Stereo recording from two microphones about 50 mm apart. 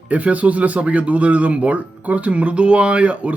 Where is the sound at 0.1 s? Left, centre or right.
Right.